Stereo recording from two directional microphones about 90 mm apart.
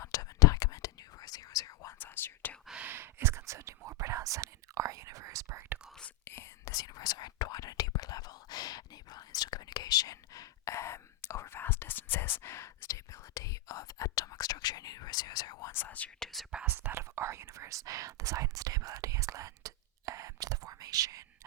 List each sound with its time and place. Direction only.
0.0 s whispering: 40° left (ahead or behind)
2.0 s whispering: 25° left (ahead or behind)
2.6 s whispering: 15° right (ahead or behind)
2.9 s whispering: 25° right (ahead or behind)
5.5 s whispering: 20° right (ahead or behind)
6.2 s whispering: 25° left (ahead or behind)
6.7 s whispering: 45° left (ahead or behind)
15.7 s whispering: 20° left (ahead or behind)
16.2 s whispering: centre (ahead or behind)
16.6 s whispering: 25° right (ahead or behind); by 21.2 s 40° right (ahead or behind)